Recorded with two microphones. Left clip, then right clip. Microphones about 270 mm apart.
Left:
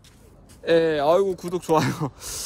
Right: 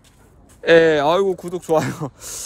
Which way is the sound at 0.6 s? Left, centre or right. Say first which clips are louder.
Right 7 dB; right.